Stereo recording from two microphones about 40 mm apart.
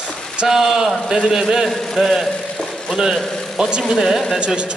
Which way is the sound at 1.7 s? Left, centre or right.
Centre.